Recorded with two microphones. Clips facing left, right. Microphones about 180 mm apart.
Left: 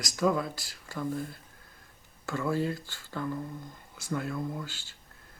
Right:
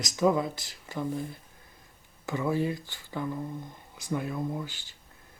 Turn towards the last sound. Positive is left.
turn(degrees=-15)  # may be behind; listen again after turning